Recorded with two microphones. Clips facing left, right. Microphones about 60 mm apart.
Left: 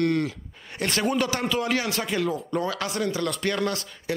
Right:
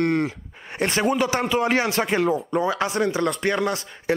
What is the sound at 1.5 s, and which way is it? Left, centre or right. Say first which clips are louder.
Speech: right 4 dB; right.